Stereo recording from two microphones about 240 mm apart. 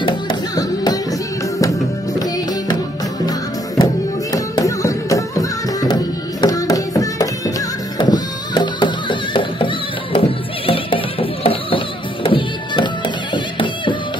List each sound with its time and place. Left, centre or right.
0.0 s music: centre
3.3 s music: centre